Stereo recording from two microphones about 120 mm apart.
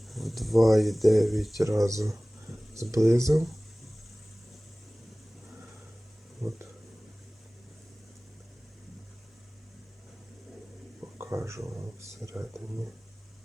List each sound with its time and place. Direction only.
0.1 s speech: centre (ahead or behind)
1.5 s speech: 25° right (ahead or behind)
11.0 s speech: 25° right (ahead or behind)